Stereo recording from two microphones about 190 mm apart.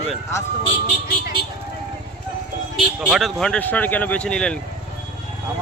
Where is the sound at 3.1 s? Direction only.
Centre (ahead or behind).